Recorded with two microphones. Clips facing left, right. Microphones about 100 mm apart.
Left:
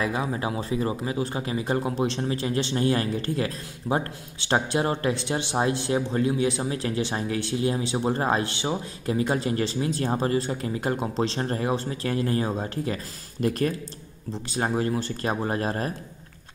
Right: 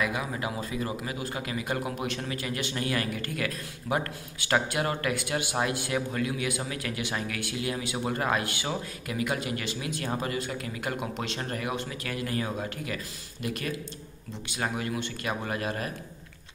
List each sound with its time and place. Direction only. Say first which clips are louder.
0.0 s speech: left 4 dB; 30° left (ahead or behind)